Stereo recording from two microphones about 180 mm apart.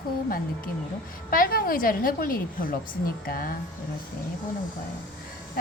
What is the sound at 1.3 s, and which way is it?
A woman's voice, 55° left (ahead or behind).